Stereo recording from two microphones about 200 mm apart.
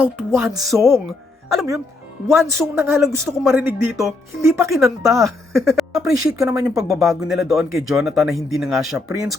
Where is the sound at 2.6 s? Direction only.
15° right (ahead or behind).